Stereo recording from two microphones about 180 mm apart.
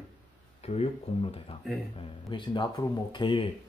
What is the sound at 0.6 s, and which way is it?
Speech, 35° left (ahead or behind).